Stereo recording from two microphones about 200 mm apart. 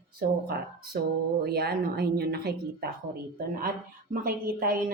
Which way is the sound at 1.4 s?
50° right (ahead or behind).